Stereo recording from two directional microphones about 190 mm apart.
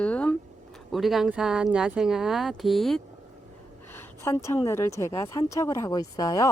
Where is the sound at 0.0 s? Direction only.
5° left (ahead or behind).